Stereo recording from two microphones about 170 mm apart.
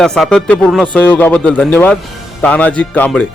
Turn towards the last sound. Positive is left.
turn(degrees=10)  # may be behind; listen again after turning